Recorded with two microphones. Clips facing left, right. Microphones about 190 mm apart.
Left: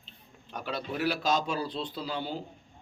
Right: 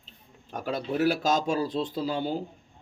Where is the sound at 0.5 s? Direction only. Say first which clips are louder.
Right 5 dB; 45° right (ahead or behind).